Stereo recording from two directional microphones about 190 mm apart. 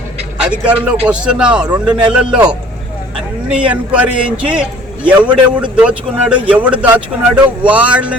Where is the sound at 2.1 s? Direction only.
5° right (ahead or behind).